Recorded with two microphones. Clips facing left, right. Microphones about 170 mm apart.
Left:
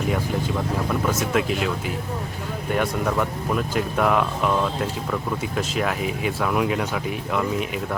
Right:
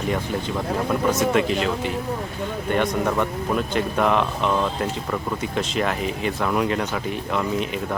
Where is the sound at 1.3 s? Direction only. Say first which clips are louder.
Right 2 dB; 5° left (ahead or behind).